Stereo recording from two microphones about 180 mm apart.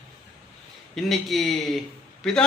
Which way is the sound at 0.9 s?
Centre (ahead or behind).